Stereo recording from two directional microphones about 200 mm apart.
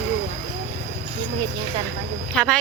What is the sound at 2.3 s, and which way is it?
Speech, 5° left (ahead or behind).